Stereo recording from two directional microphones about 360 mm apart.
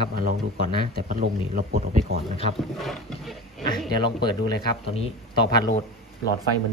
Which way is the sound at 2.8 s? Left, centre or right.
Centre.